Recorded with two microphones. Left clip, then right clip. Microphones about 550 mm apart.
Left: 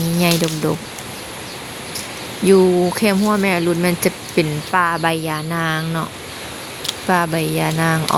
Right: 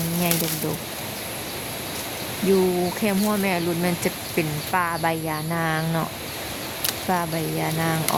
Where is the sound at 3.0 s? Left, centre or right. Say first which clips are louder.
Left 6 dB; right.